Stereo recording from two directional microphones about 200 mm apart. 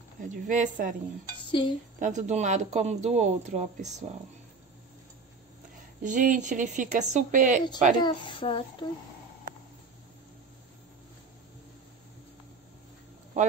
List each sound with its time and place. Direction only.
0.3 s speech: 40° right (ahead or behind)
1.5 s child singing: 25° left (ahead or behind)
2.0 s speech: 35° right (ahead or behind)
6.0 s speech: 40° right (ahead or behind)
8.0 s child singing: 25° left (ahead or behind)